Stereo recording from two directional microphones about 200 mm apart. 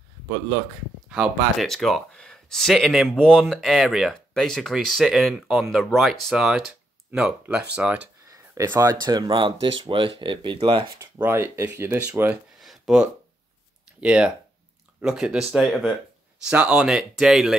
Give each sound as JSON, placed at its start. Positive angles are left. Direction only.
{"t": 1.0, "sound": "speech", "side_deg": -5}
{"t": 8.5, "sound": "speech", "side_deg": -15}
{"t": 11.0, "sound": "speech", "side_deg": -15}
{"t": 12.5, "sound": "a sound", "side_deg": 0}
{"t": 14.0, "sound": "speech", "side_deg": -5}